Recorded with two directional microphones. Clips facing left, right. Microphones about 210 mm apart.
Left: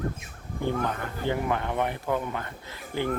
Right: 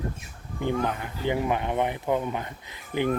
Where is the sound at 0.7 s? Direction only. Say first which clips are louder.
Right 2 dB; 15° right (ahead or behind).